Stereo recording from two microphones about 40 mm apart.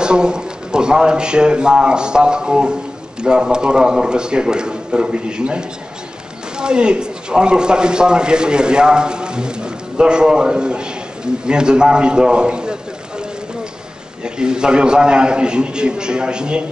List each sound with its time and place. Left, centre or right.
0.0 s a man's voice: right
14.2 s a man's voice: centre